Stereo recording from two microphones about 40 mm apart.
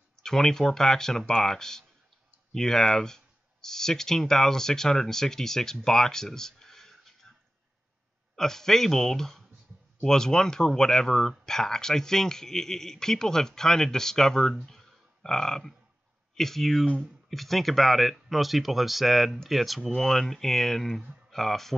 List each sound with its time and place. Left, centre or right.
0.1 s speech: centre
8.4 s speech: centre
14.7 s a sound: centre
16.3 s speech: centre
20.0 s speech: centre